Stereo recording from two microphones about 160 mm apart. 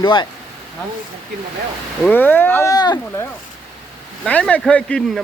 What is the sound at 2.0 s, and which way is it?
Speech, 10° left (ahead or behind).